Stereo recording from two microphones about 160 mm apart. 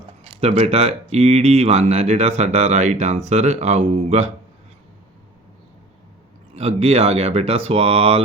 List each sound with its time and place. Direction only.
0.3 s speech: 40° right (ahead or behind)
6.6 s speech: 40° right (ahead or behind)